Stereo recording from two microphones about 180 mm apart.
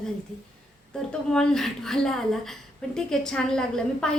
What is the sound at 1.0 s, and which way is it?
A woman's voice, 5° left (ahead or behind).